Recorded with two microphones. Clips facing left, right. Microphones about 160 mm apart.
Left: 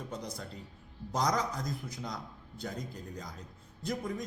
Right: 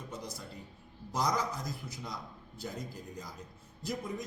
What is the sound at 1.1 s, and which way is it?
Speech, 5° right (ahead or behind).